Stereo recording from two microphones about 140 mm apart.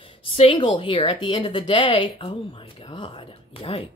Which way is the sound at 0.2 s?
40° left (ahead or behind).